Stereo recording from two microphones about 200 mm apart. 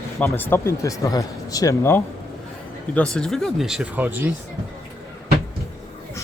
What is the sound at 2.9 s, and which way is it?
Speech, 5° left (ahead or behind).